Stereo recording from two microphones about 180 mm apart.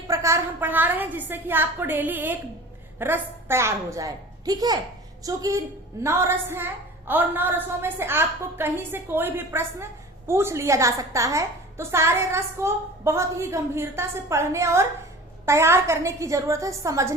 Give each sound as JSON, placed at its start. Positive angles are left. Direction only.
{"t": 0.1, "sound": "a woman's voice", "side_deg": -15}